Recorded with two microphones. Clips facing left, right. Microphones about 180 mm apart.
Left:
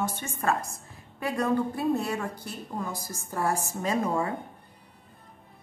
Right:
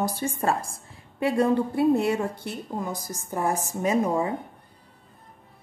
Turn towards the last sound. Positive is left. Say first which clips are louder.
# right 4 dB
turn(degrees=-15)  # may be behind; listen again after turning